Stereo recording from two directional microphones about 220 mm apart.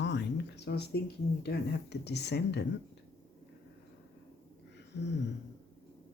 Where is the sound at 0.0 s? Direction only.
50° left (ahead or behind).